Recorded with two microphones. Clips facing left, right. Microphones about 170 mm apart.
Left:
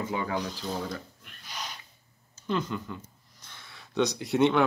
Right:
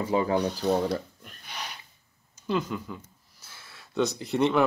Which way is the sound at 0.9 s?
40° right (ahead or behind).